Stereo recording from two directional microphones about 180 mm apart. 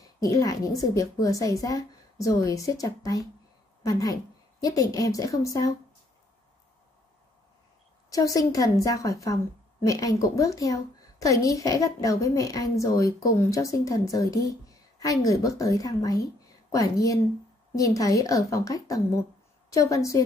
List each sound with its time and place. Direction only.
0.2 s a woman's voice: 20° left (ahead or behind)
8.1 s a woman's voice: 20° left (ahead or behind)